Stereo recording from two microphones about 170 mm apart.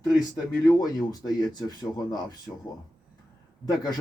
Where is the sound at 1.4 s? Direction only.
25° left (ahead or behind).